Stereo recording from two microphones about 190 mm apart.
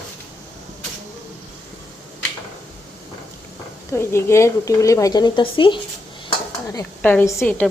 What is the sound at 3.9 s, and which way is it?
A woman's voice, 15° left (ahead or behind).